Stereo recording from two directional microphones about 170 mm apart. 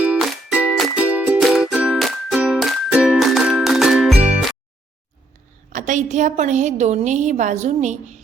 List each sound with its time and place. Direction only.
0.0 s music: 5° right (ahead or behind)
5.7 s a woman's voice: 45° right (ahead or behind)